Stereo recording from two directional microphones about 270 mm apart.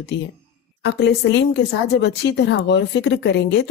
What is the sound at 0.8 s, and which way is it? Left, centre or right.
Speech, left.